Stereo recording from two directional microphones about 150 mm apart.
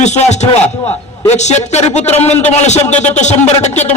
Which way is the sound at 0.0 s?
50° left (ahead or behind).